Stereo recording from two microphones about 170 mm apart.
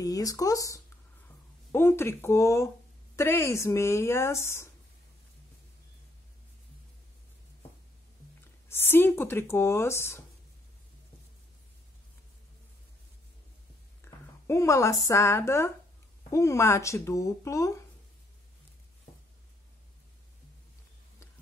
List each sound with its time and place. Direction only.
0.0 s speech: 20° left (ahead or behind)
8.6 s speech: 15° left (ahead or behind)
14.0 s speech: 15° left (ahead or behind)